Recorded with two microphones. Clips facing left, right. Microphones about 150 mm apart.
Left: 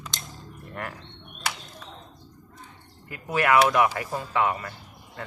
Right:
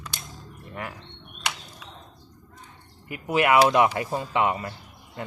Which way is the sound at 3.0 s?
15° right (ahead or behind).